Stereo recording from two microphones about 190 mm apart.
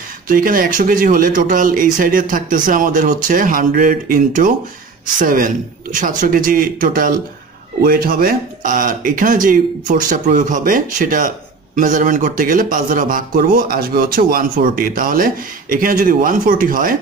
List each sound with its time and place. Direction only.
0.3 s speech: 45° right (ahead or behind)